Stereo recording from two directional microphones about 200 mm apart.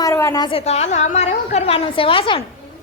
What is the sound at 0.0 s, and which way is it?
A woman's voice, 15° left (ahead or behind).